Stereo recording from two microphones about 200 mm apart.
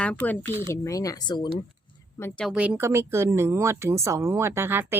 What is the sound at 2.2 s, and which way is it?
Speech, centre (ahead or behind).